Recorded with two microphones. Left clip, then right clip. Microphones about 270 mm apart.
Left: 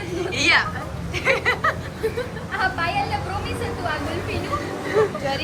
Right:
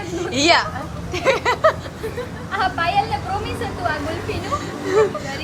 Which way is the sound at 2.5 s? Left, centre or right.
Right.